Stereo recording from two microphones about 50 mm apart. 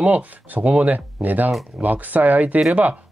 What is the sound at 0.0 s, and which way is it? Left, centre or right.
Speech, right.